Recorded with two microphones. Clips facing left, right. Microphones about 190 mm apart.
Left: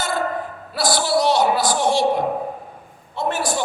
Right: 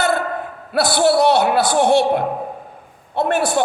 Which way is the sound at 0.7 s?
60° right (ahead or behind).